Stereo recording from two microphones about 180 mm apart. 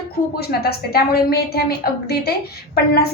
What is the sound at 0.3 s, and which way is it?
A woman's voice, 60° left (ahead or behind).